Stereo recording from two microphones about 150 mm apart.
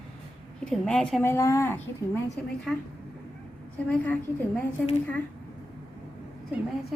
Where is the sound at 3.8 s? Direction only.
10° left (ahead or behind).